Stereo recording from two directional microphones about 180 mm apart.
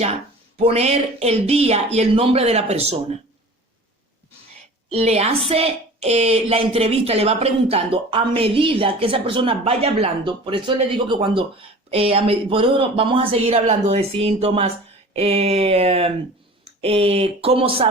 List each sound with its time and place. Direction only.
0.6 s a woman's voice: 35° right (ahead or behind)
4.9 s a woman's voice: 35° right (ahead or behind)